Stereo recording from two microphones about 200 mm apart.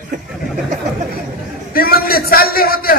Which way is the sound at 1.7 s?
50° left (ahead or behind).